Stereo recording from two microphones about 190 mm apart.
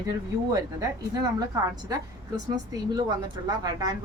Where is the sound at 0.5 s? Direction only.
20° right (ahead or behind).